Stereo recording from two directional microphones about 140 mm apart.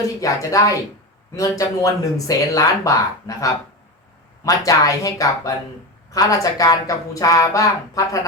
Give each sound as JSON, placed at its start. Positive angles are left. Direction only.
{"t": 0.2, "sound": "speech", "side_deg": 25}